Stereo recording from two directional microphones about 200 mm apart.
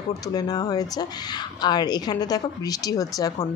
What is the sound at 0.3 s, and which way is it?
A woman's voice, 20° left (ahead or behind).